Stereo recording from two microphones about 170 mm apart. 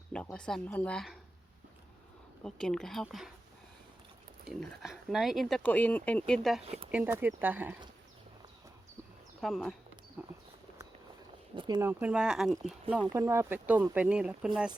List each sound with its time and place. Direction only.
0.1 s speech: 5° left (ahead or behind)
2.4 s speech: 5° left (ahead or behind)
4.4 s speech: centre (ahead or behind)
6.9 s speech: 10° right (ahead or behind)
9.4 s speech: 5° left (ahead or behind)
10.2 s a sound: 10° right (ahead or behind)
11.5 s speech: 30° right (ahead or behind)
11.8 s speech: 10° right (ahead or behind)
13.0 s speech: 20° right (ahead or behind)